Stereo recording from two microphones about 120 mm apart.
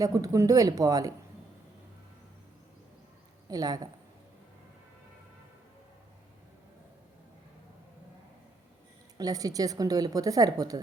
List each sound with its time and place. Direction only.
0.0 s speech: 30° right (ahead or behind)
3.5 s a woman's voice: 30° right (ahead or behind)
9.1 s a woman's voice: 30° right (ahead or behind)